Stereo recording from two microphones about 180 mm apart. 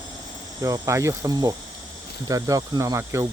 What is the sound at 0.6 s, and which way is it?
Speech, 20° right (ahead or behind).